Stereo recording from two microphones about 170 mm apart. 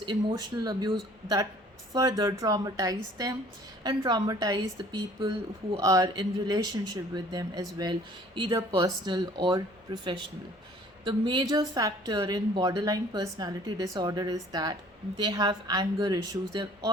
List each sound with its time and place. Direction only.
0.0 s a woman's voice: 25° right (ahead or behind)